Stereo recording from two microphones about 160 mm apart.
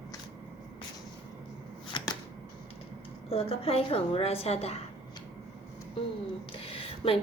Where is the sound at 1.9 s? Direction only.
30° left (ahead or behind).